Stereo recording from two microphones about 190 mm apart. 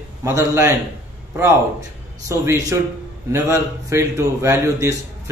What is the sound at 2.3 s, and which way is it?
Speech, 15° right (ahead or behind).